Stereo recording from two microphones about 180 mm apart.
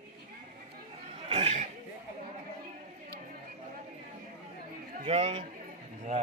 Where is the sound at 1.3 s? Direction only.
35° right (ahead or behind).